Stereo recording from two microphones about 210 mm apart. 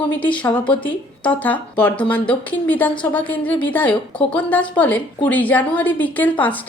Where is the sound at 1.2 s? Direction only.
5° left (ahead or behind).